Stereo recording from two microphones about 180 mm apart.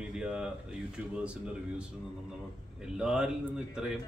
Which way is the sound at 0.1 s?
5° right (ahead or behind).